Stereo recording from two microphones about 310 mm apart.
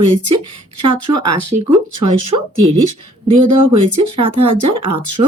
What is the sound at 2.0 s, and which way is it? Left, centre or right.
Speech, right.